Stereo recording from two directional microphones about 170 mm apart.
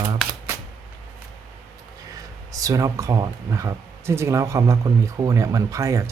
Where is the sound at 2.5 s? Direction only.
20° right (ahead or behind).